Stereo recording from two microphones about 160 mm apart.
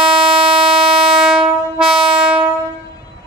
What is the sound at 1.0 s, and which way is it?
Train, 5° right (ahead or behind).